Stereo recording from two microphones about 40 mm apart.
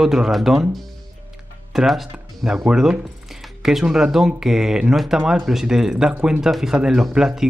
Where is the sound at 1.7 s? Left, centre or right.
Centre.